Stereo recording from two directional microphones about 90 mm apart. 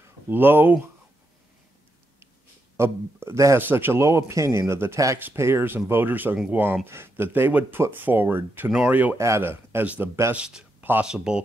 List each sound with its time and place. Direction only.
0.3 s speech: 25° right (ahead or behind)
2.8 s a man's voice: 30° right (ahead or behind)
9.2 s speech: 30° right (ahead or behind)
10.3 s speech: 10° right (ahead or behind)